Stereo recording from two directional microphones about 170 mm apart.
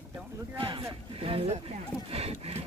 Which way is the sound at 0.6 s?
30° right (ahead or behind).